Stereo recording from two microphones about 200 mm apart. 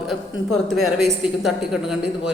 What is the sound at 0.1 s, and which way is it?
A woman's voice, centre (ahead or behind).